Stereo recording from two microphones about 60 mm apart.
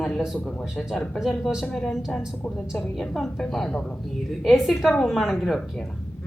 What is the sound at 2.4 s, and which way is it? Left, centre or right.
Speech, left.